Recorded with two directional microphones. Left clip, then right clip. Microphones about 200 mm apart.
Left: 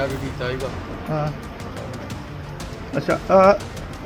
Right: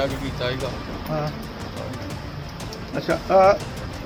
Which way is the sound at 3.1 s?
50° left (ahead or behind).